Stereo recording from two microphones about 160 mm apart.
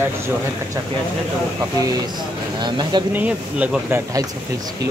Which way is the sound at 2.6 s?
30° right (ahead or behind).